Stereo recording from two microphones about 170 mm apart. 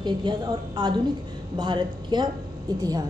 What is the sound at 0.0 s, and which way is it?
A woman's voice, 25° right (ahead or behind).